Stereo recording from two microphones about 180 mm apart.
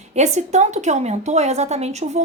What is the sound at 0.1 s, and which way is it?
A woman's voice, 40° right (ahead or behind).